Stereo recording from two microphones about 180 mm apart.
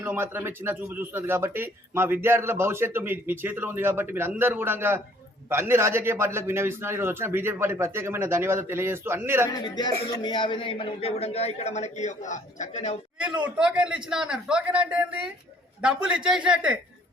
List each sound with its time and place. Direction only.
0.0 s speech: 10° right (ahead or behind)
9.5 s a man's voice: 25° left (ahead or behind); by 13.0 s 40° left (ahead or behind)
13.1 s a man's voice: 5° right (ahead or behind)